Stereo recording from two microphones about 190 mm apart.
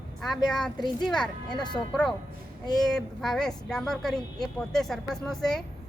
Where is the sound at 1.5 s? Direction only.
25° left (ahead or behind).